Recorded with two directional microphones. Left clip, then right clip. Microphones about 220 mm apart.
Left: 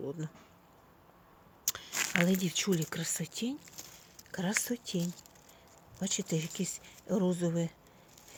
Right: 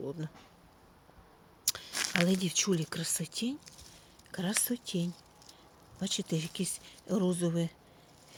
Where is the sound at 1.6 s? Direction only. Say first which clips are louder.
Right 2 dB; centre (ahead or behind).